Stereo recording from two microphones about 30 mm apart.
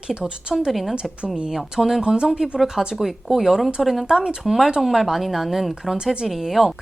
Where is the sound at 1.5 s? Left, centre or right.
Centre.